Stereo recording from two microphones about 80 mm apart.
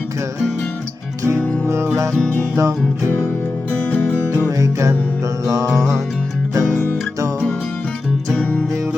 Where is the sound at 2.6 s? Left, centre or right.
Right.